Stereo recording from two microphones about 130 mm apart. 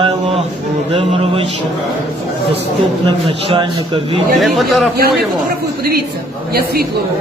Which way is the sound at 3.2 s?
40° right (ahead or behind).